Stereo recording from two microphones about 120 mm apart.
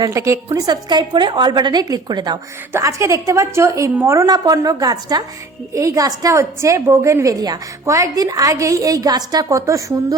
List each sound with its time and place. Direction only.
0.0 s a woman's voice: 25° right (ahead or behind)
2.7 s a woman's voice: 25° right (ahead or behind)